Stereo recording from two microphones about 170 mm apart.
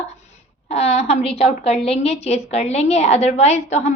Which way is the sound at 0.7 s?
40° left (ahead or behind).